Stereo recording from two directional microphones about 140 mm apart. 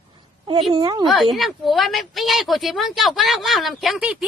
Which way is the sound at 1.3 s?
Centre (ahead or behind).